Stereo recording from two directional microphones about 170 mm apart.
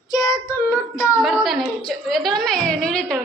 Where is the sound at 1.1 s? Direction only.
Centre (ahead or behind).